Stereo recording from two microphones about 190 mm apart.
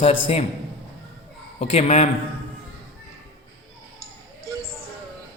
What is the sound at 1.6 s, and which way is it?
Speech, 30° left (ahead or behind).